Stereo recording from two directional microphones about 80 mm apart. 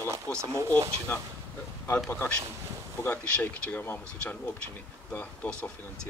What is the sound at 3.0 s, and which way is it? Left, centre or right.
A man's voice, centre.